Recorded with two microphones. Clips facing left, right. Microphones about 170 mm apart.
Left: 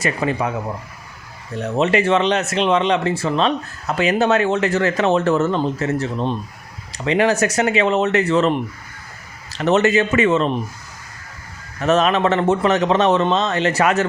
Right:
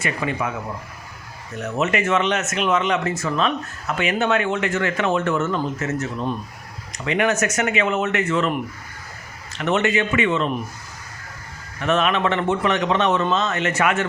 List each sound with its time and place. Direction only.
0.0 s speech: 35° left (ahead or behind)
1.5 s speech: 30° left (ahead or behind)
11.8 s speech: 40° left (ahead or behind)